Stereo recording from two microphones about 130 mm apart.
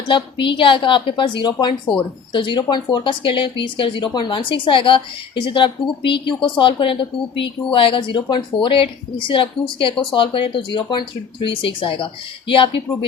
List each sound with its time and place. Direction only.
0.1 s a woman's voice: 40° left (ahead or behind)